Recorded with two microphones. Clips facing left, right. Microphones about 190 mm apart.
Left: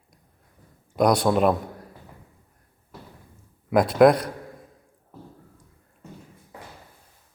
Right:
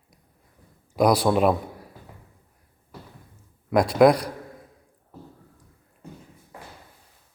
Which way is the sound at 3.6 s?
Centre (ahead or behind).